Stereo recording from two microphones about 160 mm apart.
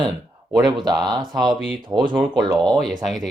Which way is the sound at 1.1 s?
25° right (ahead or behind).